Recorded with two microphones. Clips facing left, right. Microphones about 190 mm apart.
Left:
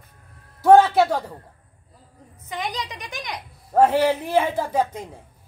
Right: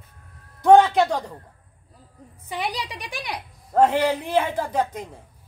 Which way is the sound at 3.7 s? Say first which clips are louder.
Left 1 dB; 10° left (ahead or behind).